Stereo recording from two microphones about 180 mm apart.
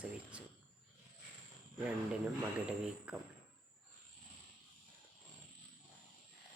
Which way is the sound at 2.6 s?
5° right (ahead or behind).